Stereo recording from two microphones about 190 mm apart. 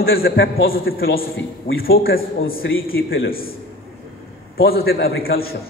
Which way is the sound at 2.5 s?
90° left.